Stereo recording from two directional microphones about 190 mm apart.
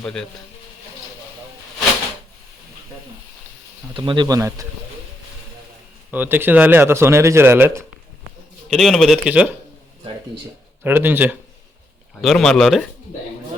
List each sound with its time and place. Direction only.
0.0 s speech: 5° left (ahead or behind)
3.9 s speech: 25° right (ahead or behind)
6.1 s speech: 10° right (ahead or behind)
8.7 s speech: centre (ahead or behind)
10.8 s speech: 10° right (ahead or behind)
12.2 s speech: centre (ahead or behind)